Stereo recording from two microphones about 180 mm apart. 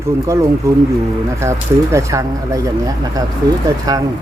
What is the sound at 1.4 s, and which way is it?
Speech, 15° right (ahead or behind).